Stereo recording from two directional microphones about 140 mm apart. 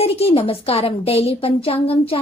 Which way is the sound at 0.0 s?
45° left (ahead or behind).